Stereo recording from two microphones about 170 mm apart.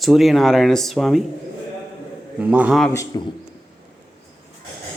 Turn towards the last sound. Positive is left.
turn(degrees=15)  # may be behind; listen again after turning